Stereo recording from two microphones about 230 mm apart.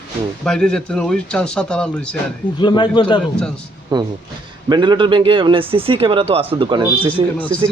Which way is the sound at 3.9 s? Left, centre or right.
Centre.